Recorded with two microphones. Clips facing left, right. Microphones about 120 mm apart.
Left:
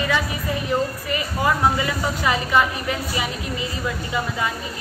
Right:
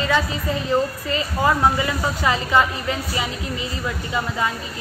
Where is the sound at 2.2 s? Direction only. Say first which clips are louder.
Right 1 dB; 20° right (ahead or behind).